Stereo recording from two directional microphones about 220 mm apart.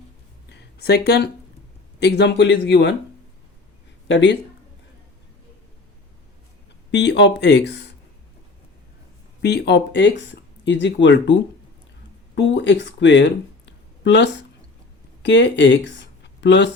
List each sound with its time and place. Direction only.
0.5 s a sound: 50° left (ahead or behind)
2.0 s speech: 50° left (ahead or behind)
4.1 s speech: 55° left (ahead or behind)
6.9 s speech: 50° left (ahead or behind)
9.4 s speech: 50° left (ahead or behind)